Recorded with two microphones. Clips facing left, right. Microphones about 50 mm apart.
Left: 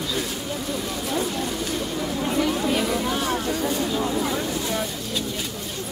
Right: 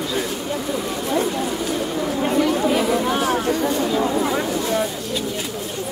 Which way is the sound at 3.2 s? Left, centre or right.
Right.